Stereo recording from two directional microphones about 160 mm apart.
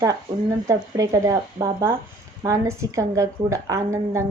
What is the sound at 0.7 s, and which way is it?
A woman's voice, 20° right (ahead or behind).